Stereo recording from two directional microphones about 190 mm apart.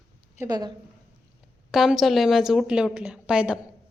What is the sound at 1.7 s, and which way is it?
A woman's voice, centre (ahead or behind).